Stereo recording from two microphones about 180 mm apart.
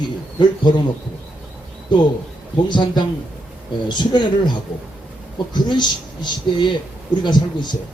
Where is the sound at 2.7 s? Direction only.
25° left (ahead or behind).